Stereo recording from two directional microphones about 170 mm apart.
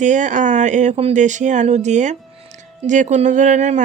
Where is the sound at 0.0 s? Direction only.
45° right (ahead or behind).